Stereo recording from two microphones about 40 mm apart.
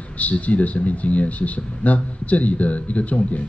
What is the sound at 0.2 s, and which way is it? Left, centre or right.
Speech, left.